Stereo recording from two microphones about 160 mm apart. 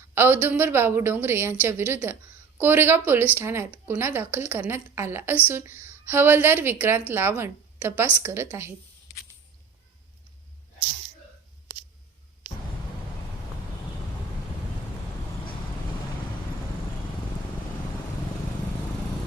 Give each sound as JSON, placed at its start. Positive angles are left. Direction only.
{"t": 0.1, "sound": "a woman's voice", "side_deg": -15}